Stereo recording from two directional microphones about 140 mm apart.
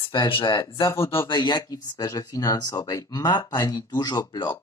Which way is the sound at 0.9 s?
20° left (ahead or behind).